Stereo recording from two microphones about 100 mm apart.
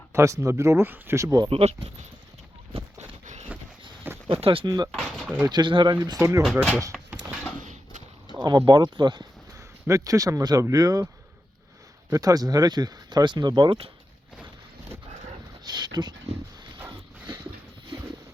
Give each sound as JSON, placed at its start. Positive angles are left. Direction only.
{"t": 0.1, "sound": "speech", "side_deg": -30}
{"t": 1.5, "sound": "speech", "side_deg": -85}
{"t": 4.3, "sound": "speech", "side_deg": -65}
{"t": 4.6, "sound": "speech", "side_deg": -45}
{"t": 4.9, "sound": "a sound", "side_deg": 0}
{"t": 5.5, "sound": "speech", "side_deg": -50}
{"t": 6.4, "sound": "speech", "side_deg": 0}
{"t": 6.9, "sound": "a sound", "side_deg": 5}
{"t": 8.3, "sound": "speech", "side_deg": -45}
{"t": 9.8, "sound": "speech", "side_deg": -35}
{"t": 12.1, "sound": "speech", "side_deg": -40}
{"t": 15.6, "sound": "a sound", "side_deg": -45}